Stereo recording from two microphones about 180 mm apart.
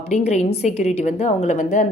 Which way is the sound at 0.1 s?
40° left (ahead or behind).